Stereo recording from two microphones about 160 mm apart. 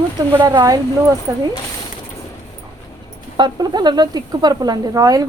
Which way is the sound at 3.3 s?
25° right (ahead or behind).